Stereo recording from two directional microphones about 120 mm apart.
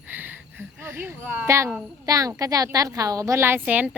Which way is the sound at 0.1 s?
15° right (ahead or behind).